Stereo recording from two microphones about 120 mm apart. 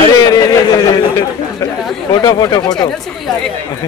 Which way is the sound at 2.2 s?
30° left (ahead or behind).